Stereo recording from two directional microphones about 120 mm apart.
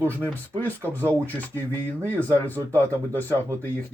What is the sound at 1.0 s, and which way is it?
Speech, 20° right (ahead or behind).